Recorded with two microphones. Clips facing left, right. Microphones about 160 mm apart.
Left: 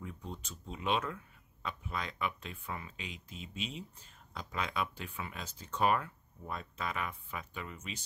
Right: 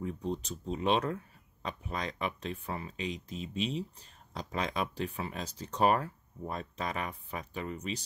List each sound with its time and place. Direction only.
0.0 s speech: 35° right (ahead or behind)